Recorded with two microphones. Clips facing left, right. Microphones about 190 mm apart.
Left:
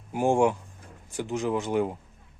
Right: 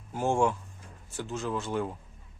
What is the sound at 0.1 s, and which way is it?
Speech, 15° left (ahead or behind).